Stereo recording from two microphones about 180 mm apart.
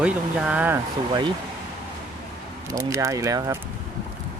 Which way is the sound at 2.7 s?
15° right (ahead or behind).